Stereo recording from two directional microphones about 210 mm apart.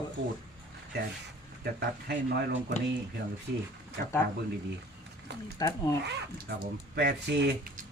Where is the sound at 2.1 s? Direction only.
55° right (ahead or behind).